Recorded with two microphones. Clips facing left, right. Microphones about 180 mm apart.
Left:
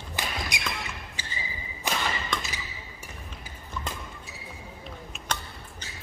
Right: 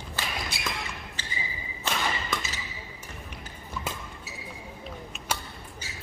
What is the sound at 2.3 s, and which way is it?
Basketball bounce, 5° right (ahead or behind).